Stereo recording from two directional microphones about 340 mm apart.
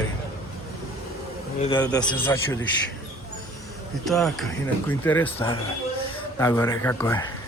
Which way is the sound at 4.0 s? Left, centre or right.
Centre.